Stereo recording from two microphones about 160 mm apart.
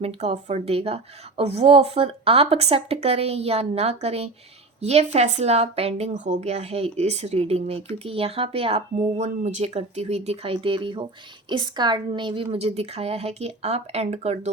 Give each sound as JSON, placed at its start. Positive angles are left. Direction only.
{"t": 0.0, "sound": "speech", "side_deg": -40}